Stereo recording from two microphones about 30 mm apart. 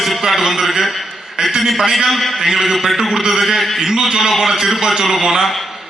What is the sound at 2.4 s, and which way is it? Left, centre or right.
Speech, centre.